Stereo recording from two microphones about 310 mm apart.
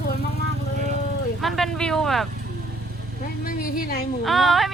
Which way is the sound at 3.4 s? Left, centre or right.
Left.